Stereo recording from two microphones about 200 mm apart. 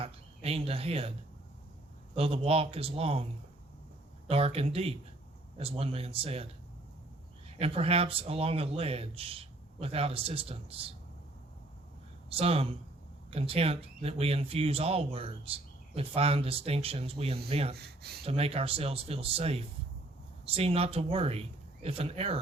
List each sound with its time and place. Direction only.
0.0 s speech: 30° right (ahead or behind)
2.1 s speech: 30° right (ahead or behind)
4.3 s speech: 30° right (ahead or behind)
12.3 s speech: 30° right (ahead or behind)
17.7 s speech: 50° right (ahead or behind)
18.3 s speech: 30° right (ahead or behind)